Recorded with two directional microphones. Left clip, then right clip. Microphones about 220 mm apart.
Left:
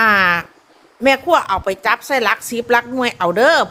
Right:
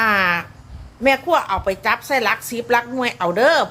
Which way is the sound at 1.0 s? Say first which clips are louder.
Left 3 dB; 30° left (ahead or behind).